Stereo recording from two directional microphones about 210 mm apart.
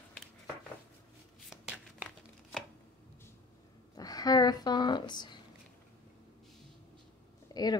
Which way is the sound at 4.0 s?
15° left (ahead or behind).